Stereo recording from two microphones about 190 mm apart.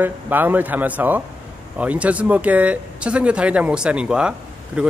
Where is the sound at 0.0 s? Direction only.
10° right (ahead or behind).